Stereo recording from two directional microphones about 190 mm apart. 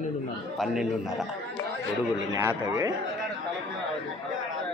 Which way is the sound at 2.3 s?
15° right (ahead or behind).